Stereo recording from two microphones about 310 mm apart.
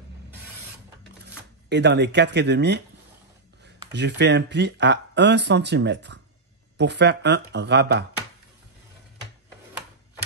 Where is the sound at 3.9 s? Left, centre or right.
Right.